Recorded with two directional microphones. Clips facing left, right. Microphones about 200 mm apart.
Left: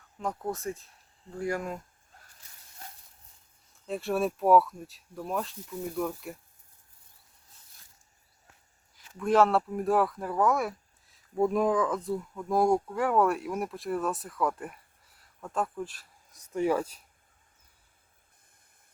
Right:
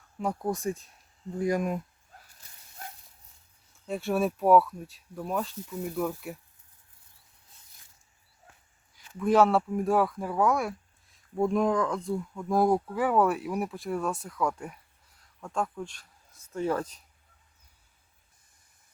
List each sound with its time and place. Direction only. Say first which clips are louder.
0.2 s speech: right 3 dB; 10° right (ahead or behind)
3.8 s speech: right 1 dB; centre (ahead or behind)
9.0 s speech: right 1 dB; centre (ahead or behind)